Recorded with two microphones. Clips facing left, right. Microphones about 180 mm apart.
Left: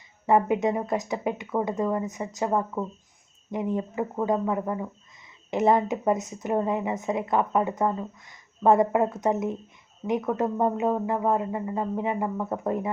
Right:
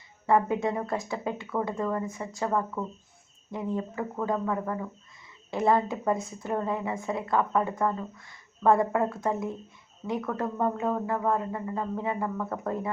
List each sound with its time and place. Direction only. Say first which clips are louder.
0.3 s speech: left 3 dB; 20° left (ahead or behind)